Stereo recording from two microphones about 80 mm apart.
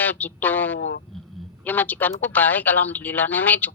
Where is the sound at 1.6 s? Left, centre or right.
Left.